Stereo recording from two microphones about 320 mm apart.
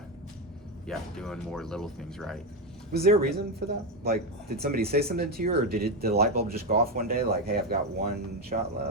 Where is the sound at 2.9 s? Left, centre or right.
Right.